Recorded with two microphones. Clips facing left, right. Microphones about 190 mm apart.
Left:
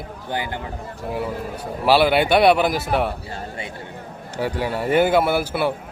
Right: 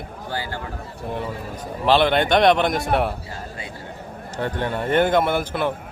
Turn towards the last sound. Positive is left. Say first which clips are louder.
# left 2 dB
turn(degrees=10)  # may be behind; listen again after turning